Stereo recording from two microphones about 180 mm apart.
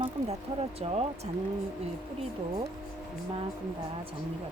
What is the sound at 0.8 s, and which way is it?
Speech, 35° right (ahead or behind).